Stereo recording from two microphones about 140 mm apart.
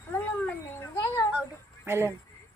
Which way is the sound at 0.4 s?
20° left (ahead or behind).